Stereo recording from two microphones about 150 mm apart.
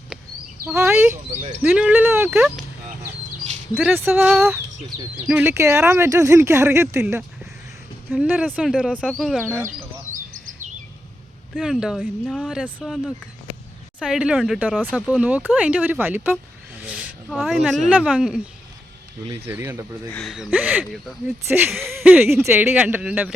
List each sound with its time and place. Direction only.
0.8 s speech: 15° right (ahead or behind)
1.6 s speech: 5° right (ahead or behind)
4.2 s speech: 15° right (ahead or behind)
11.5 s speech: 5° right (ahead or behind)
16.8 s a sound: 5° right (ahead or behind)
17.2 s speech: 5° left (ahead or behind)
19.5 s speech: 15° right (ahead or behind)
20.1 s speech: 5° left (ahead or behind)
20.3 s speech: 10° right (ahead or behind)
21.4 s speech: 15° right (ahead or behind)
21.7 s speech: centre (ahead or behind)
22.0 s speech: 15° right (ahead or behind)